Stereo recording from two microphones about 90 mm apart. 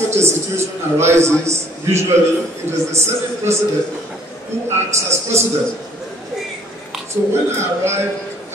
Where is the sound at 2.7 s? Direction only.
30° right (ahead or behind).